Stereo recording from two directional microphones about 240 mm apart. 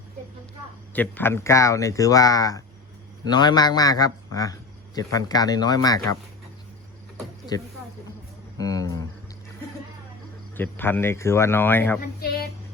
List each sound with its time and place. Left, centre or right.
0.9 s speech: centre
8.5 s speech: centre
10.6 s speech: centre
12.2 s speech: left